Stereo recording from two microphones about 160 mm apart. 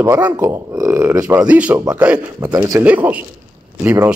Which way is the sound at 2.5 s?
20° right (ahead or behind).